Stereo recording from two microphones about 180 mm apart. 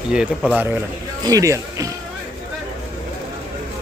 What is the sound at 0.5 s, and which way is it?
Speech, 10° right (ahead or behind).